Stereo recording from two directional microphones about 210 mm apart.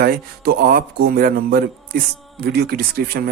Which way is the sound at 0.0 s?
45° right (ahead or behind).